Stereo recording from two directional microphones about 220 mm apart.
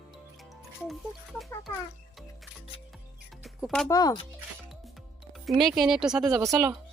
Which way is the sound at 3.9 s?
15° left (ahead or behind).